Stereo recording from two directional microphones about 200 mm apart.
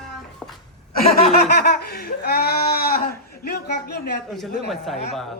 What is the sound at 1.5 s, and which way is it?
Speech, 55° left (ahead or behind).